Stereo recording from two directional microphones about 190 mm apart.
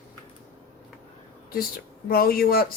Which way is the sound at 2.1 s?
50° left (ahead or behind).